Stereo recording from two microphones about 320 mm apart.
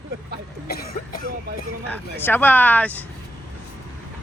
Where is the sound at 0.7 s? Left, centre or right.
Left.